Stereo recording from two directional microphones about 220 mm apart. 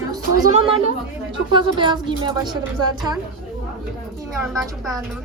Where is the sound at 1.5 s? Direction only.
20° right (ahead or behind).